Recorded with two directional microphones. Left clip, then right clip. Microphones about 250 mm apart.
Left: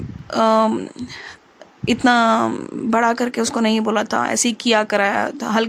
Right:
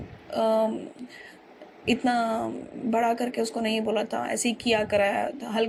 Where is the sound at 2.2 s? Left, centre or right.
Left.